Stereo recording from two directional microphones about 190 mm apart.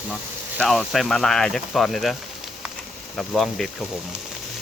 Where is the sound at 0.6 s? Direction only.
Centre (ahead or behind).